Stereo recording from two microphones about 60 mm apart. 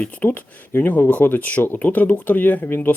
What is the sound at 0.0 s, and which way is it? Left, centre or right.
Speech, left.